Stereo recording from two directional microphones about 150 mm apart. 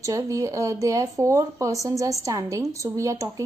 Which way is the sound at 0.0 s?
20° right (ahead or behind).